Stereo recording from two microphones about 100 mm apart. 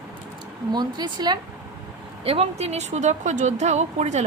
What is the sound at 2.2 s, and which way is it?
Speech, 75° right (ahead or behind).